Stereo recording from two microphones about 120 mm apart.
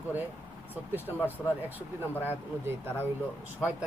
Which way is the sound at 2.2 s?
20° right (ahead or behind).